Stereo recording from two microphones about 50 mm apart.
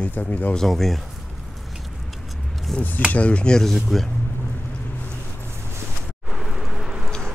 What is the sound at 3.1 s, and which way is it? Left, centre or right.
Speech, left.